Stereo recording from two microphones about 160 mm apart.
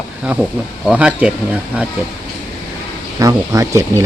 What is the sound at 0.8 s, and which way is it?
Speech, 5° right (ahead or behind).